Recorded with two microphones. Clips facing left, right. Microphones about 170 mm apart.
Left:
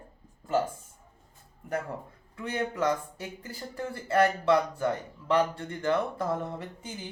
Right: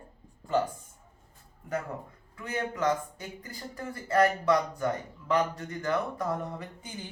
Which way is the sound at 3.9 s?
25° left (ahead or behind).